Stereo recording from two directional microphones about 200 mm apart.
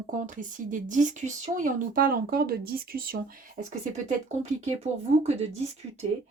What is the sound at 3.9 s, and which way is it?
Speech, 35° right (ahead or behind).